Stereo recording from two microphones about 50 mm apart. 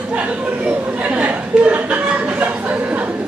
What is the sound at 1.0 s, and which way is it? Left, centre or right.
Chuckle, right.